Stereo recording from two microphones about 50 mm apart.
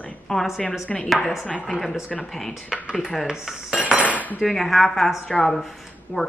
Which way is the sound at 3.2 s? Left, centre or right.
Centre.